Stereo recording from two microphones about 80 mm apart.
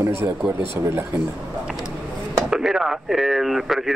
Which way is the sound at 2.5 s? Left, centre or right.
Centre.